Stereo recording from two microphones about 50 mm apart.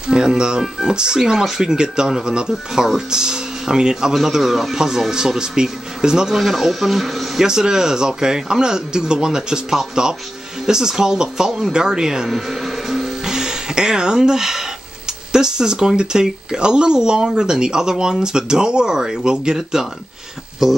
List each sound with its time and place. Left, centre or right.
0.1 s speech: centre
7.4 s speech: centre